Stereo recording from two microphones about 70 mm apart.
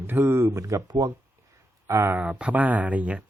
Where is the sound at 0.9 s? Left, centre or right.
Right.